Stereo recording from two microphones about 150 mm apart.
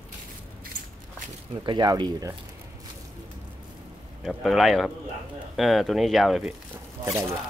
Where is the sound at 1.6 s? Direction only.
30° right (ahead or behind).